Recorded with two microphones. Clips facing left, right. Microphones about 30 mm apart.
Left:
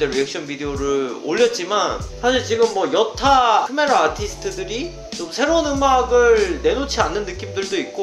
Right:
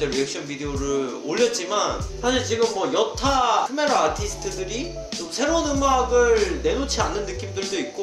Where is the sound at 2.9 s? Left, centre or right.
Centre.